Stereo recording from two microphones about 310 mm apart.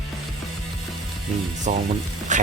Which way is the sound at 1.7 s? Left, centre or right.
Right.